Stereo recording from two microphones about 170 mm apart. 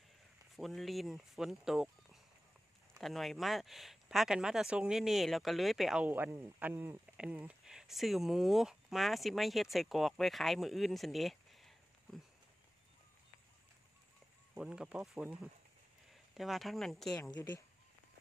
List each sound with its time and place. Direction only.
0.6 s speech: centre (ahead or behind)
3.0 s speech: centre (ahead or behind)
14.5 s speech: 5° right (ahead or behind)
16.3 s speech: centre (ahead or behind)
17.1 s a woman's voice: 20° left (ahead or behind)